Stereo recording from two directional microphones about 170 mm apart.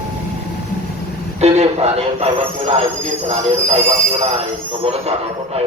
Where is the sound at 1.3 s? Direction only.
40° right (ahead or behind).